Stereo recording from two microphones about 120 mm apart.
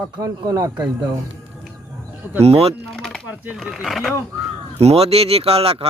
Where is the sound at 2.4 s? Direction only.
55° right (ahead or behind).